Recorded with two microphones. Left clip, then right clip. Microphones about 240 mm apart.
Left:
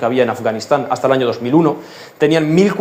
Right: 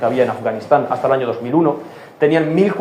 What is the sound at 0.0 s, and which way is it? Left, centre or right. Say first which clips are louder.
A man's voice: left 1 dB; left.